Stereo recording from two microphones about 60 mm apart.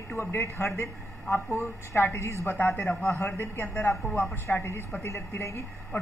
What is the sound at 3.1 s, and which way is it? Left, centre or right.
A man's voice, left.